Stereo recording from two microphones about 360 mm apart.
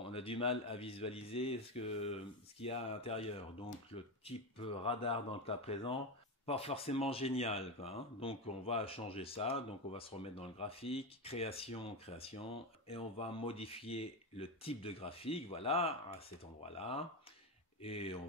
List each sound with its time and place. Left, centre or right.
0.0 s speech: centre